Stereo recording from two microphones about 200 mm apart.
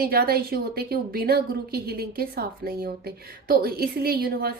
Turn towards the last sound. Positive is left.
turn(degrees=-50)  # may be behind; listen again after turning